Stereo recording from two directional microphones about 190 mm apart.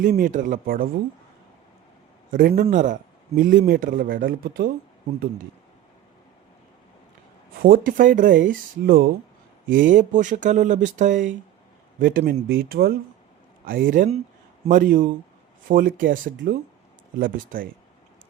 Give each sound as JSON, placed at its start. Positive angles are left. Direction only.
{"t": 0.0, "sound": "a man's voice", "side_deg": -45}
{"t": 2.3, "sound": "a man's voice", "side_deg": -45}
{"t": 7.6, "sound": "a man's voice", "side_deg": -50}